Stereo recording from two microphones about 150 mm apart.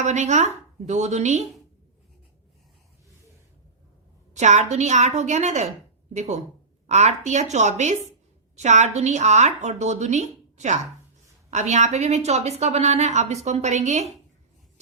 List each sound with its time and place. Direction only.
0.0 s a woman's voice: 50° right (ahead or behind)
4.4 s a woman's voice: 50° right (ahead or behind)